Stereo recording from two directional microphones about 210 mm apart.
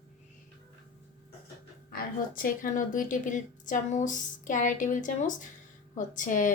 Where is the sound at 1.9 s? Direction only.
40° left (ahead or behind).